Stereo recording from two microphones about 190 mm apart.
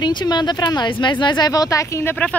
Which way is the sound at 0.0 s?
25° left (ahead or behind).